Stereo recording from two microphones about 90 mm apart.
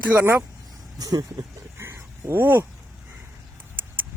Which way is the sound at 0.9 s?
40° right (ahead or behind).